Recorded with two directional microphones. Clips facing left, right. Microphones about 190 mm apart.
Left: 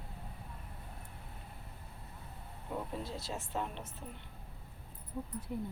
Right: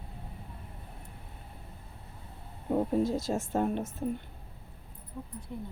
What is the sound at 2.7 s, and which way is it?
Speech, 45° right (ahead or behind).